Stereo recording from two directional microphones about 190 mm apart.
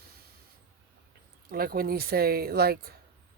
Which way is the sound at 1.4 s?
50° right (ahead or behind).